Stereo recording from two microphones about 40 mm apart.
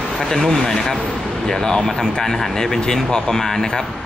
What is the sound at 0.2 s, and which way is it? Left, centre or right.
Speech, centre.